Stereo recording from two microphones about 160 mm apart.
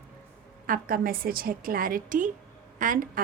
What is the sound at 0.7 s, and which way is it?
A woman's voice, 65° right (ahead or behind).